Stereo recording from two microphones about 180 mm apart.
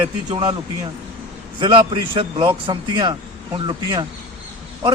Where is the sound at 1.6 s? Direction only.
25° right (ahead or behind).